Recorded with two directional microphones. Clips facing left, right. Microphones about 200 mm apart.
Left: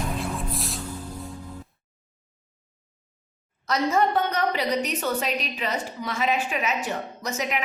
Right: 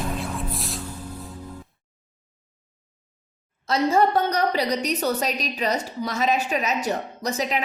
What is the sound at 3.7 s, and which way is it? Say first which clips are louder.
A woman's voice: right 3 dB; 35° right (ahead or behind).